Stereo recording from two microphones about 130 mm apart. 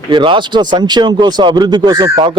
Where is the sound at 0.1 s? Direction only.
40° right (ahead or behind).